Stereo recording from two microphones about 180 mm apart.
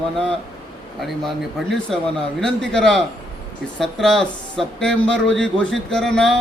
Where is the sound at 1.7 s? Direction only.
5° left (ahead or behind).